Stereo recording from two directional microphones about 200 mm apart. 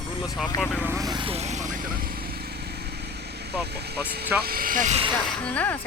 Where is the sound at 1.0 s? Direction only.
25° right (ahead or behind); by 2.8 s 50° right (ahead or behind).